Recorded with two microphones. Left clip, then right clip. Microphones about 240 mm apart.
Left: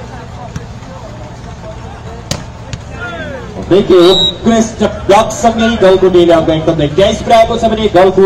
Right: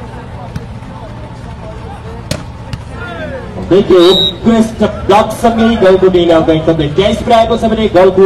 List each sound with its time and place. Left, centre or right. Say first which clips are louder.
3.7 s music: even; left